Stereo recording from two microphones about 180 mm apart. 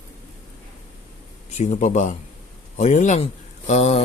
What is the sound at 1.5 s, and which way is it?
A man's voice, 40° left (ahead or behind).